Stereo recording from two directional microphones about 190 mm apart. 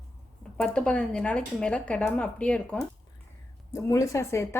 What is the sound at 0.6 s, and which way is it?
Speech, 5° left (ahead or behind).